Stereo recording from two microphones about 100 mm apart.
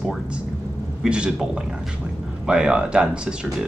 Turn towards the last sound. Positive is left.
turn(degrees=-10)  # may be behind; listen again after turning